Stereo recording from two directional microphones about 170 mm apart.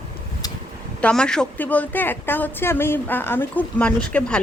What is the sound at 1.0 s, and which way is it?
Speech, 5° left (ahead or behind).